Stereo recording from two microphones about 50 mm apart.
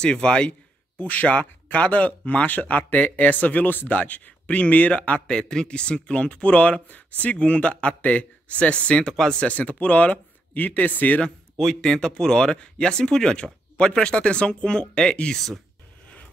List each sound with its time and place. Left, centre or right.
0.0 s speech: centre
0.9 s speech: left
5.3 s speech: centre
9.0 s speech: centre
9.4 s speech: left
11.5 s speech: centre